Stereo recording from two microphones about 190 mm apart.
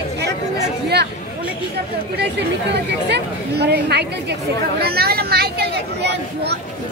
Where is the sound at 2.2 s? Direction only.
65° right (ahead or behind).